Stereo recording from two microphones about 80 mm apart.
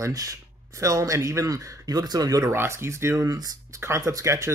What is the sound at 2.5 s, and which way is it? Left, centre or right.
Speech, right.